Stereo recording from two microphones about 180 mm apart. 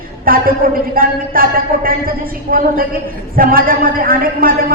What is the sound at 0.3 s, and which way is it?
A man's voice, 55° right (ahead or behind).